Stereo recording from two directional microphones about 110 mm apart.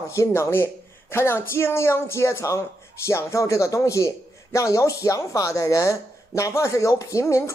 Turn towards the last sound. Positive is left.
turn(degrees=25)  # may be behind; listen again after turning